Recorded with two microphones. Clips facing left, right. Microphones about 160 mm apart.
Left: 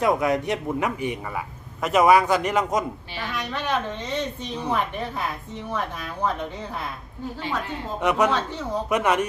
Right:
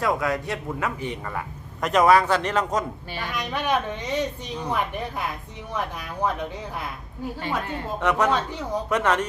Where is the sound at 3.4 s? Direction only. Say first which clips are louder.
Right 2 dB; 15° right (ahead or behind).